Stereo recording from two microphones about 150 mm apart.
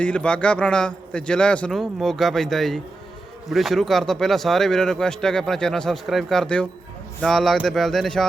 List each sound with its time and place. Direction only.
0.0 s speech: 5° left (ahead or behind)